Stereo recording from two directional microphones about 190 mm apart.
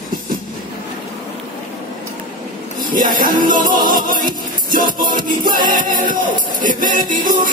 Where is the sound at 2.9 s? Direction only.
45° right (ahead or behind).